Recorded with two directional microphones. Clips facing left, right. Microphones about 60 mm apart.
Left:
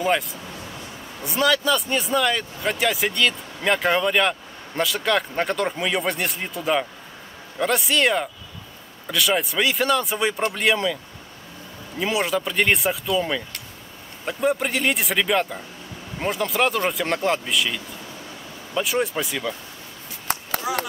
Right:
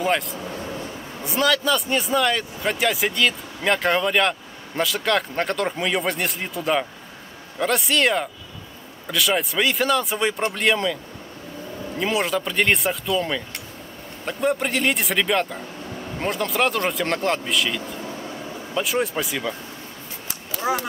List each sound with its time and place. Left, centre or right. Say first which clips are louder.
0.0 s speech: even; centre
12.0 s speech: even; centre
20.3 s chop: left 15 dB; left
20.7 s speech: right 3 dB; right